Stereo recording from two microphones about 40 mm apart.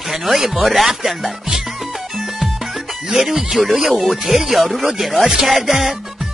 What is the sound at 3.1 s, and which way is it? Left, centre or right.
Music, centre.